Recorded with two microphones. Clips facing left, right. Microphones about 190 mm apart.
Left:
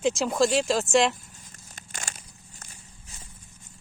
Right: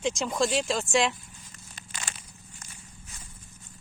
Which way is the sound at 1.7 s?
45° left (ahead or behind).